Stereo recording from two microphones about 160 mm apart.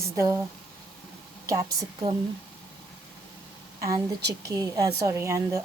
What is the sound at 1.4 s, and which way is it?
Speech, 20° right (ahead or behind).